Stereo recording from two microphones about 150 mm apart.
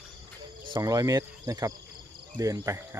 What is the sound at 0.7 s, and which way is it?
Speech, 25° right (ahead or behind).